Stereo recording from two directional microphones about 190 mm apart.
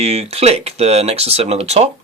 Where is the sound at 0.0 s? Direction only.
35° right (ahead or behind).